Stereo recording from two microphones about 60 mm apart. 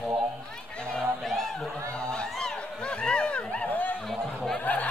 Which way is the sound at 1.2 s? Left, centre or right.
Centre.